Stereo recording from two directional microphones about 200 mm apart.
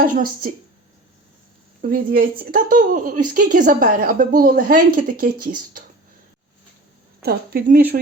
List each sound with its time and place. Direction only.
0.0 s a woman's voice: 45° right (ahead or behind)
1.8 s a woman's voice: 45° right (ahead or behind)
7.2 s a woman's voice: 50° right (ahead or behind)